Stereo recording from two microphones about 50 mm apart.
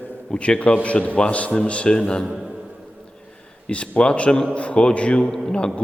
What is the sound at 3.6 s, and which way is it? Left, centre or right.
A man's voice, left.